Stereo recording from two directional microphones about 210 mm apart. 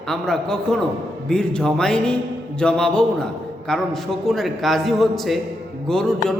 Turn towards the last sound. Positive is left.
turn(degrees=5)  # may be behind; listen again after turning